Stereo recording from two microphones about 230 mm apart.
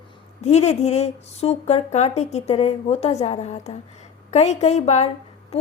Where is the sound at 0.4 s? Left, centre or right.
Left.